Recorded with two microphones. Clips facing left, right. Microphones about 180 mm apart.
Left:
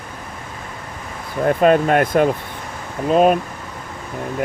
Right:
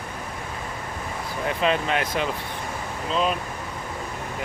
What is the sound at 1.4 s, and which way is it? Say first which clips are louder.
Speech: left 10 dB; 50° left (ahead or behind).